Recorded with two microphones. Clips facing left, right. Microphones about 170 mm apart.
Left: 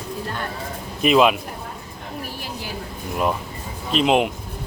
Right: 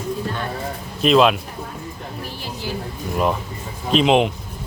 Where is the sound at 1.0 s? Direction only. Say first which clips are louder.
Right 1 dB; 10° left (ahead or behind).